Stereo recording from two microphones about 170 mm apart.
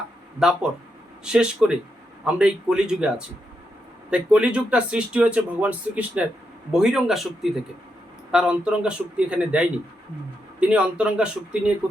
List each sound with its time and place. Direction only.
0.3 s a man's voice: 5° right (ahead or behind)